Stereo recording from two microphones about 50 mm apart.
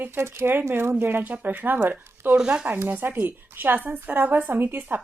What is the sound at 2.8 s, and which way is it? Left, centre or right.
A woman's voice, right.